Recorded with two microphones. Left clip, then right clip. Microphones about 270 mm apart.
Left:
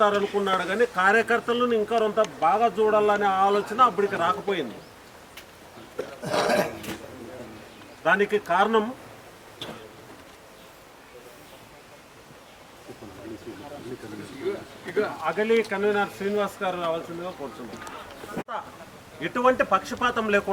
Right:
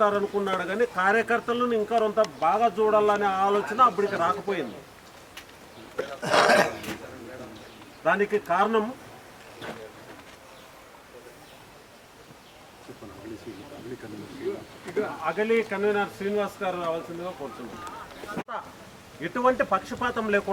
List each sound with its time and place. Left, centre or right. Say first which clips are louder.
0.0 s speech: left 2 dB; centre
6.0 s a sound: right 4 dB; centre
8.0 s speech: left 2 dB; centre
14.8 s speech: left 2 dB; centre